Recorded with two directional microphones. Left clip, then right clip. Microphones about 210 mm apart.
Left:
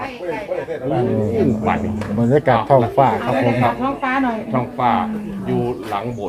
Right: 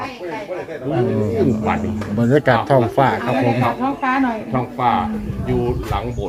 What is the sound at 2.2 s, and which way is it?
Speech, 15° right (ahead or behind).